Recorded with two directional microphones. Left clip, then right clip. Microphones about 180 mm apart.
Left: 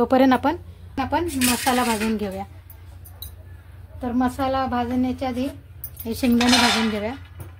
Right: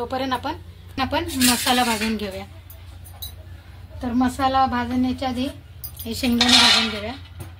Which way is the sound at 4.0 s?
55° left (ahead or behind).